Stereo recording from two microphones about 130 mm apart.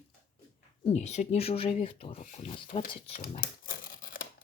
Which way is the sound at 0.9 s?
60° left (ahead or behind).